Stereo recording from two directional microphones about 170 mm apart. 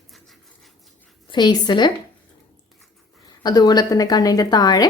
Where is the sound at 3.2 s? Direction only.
25° left (ahead or behind).